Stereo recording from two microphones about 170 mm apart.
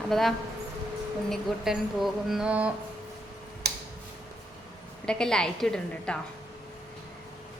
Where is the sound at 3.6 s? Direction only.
75° right (ahead or behind).